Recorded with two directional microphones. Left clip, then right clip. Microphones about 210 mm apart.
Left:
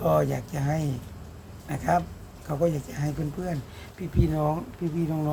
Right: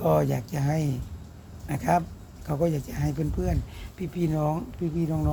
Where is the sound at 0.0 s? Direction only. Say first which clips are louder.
Even; 30° right (ahead or behind).